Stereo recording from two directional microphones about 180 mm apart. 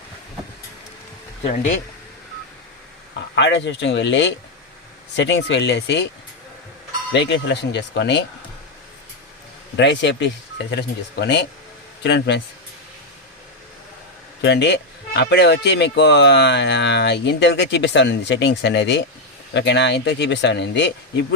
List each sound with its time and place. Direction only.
3.3 s speech: 80° left
7.1 s speech: 75° left (ahead or behind)
9.7 s speech: 85° left
10.7 s speech: 70° left (ahead or behind)
14.4 s speech: 70° left (ahead or behind)